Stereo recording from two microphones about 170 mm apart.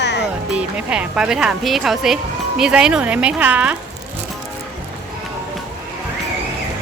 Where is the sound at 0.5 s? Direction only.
5° right (ahead or behind).